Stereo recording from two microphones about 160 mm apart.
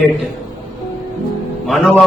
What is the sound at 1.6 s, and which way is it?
Speech, centre (ahead or behind).